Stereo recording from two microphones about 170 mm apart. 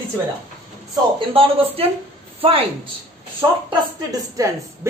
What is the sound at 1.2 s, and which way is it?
Speech, 35° right (ahead or behind).